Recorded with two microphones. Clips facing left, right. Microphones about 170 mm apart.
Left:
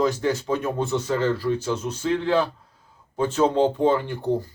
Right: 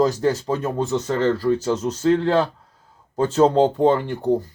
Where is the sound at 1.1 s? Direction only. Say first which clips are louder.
Right 3 dB; 10° left (ahead or behind).